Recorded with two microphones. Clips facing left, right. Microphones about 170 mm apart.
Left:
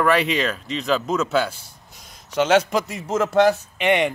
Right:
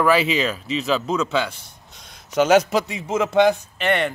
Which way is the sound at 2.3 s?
10° right (ahead or behind).